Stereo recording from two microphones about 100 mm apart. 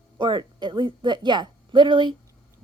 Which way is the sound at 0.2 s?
50° right (ahead or behind).